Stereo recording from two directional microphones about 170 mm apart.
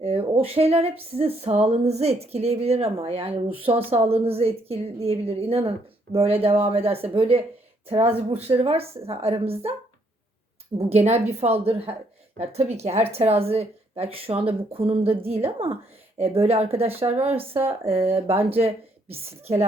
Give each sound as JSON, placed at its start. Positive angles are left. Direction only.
{"t": 0.0, "sound": "speech", "side_deg": -35}
{"t": 10.8, "sound": "speech", "side_deg": -40}